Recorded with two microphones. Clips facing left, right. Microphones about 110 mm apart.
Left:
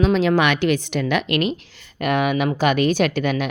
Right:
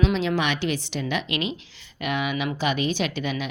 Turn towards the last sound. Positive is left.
turn(degrees=55)  # may be behind; listen again after turning